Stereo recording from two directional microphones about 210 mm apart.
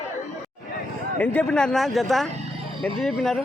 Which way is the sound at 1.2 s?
5° left (ahead or behind).